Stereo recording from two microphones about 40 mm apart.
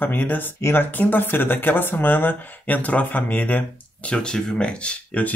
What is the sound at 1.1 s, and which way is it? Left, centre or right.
Speech, left.